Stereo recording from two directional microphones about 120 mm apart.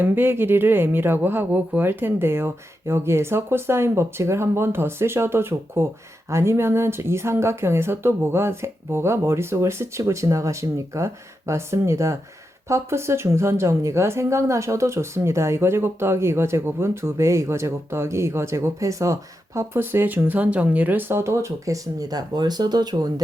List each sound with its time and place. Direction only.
0.0 s a woman's voice: 20° right (ahead or behind); by 23.2 s 35° right (ahead or behind)